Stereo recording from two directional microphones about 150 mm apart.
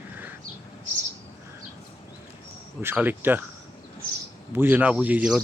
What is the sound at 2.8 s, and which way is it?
Speech, 15° right (ahead or behind).